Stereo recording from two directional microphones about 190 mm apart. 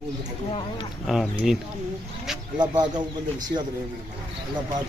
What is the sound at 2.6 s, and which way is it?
Speech, 25° right (ahead or behind).